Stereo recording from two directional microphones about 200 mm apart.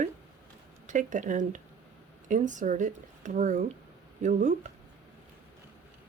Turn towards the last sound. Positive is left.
turn(degrees=-35)  # may be behind; listen again after turning